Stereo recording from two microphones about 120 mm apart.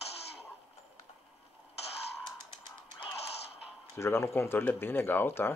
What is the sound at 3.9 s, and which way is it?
Speech, 25° left (ahead or behind).